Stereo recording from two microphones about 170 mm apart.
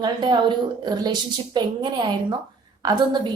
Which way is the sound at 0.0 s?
25° right (ahead or behind).